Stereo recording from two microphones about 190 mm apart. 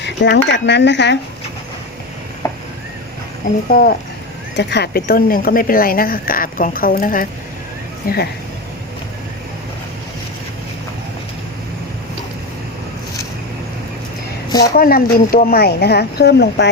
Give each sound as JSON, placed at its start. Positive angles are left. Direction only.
{"t": 0.0, "sound": "speech", "side_deg": 65}
{"t": 2.4, "sound": "a sound", "side_deg": 15}
{"t": 3.7, "sound": "speech", "side_deg": 50}
{"t": 4.5, "sound": "speech", "side_deg": 60}
{"t": 14.6, "sound": "speech", "side_deg": 50}